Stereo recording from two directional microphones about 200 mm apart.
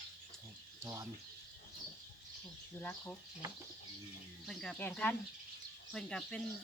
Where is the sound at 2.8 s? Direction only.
5° left (ahead or behind).